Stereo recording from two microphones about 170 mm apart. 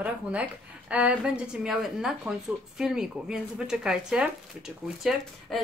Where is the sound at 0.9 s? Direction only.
5° right (ahead or behind).